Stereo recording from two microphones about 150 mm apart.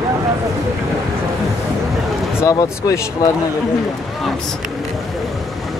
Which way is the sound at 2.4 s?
20° left (ahead or behind).